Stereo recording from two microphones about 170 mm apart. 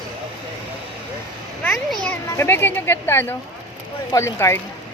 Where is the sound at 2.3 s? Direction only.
15° left (ahead or behind).